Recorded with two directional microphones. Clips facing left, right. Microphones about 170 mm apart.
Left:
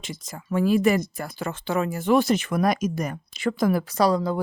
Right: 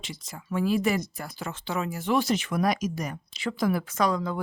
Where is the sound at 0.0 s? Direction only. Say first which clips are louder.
Left 4 dB; 45° left (ahead or behind).